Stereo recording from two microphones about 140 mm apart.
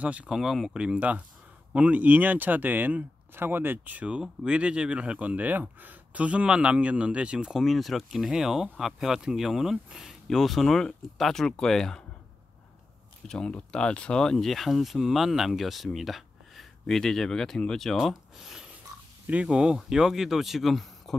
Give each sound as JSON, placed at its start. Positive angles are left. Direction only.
{"t": 0.0, "sound": "speech", "side_deg": -10}
{"t": 13.3, "sound": "speech", "side_deg": 5}